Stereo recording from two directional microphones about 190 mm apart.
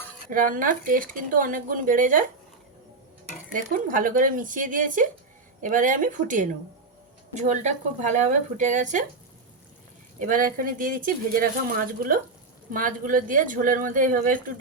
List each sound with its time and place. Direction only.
0.3 s speech: 45° right (ahead or behind)
3.5 s speech: 45° right (ahead or behind)
10.2 s speech: 45° right (ahead or behind)